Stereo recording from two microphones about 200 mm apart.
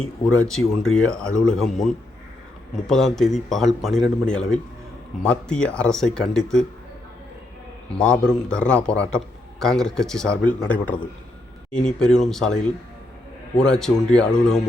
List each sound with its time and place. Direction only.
0.3 s a man's voice: centre (ahead or behind)
7.9 s a man's voice: 5° left (ahead or behind)
13.6 s a man's voice: centre (ahead or behind)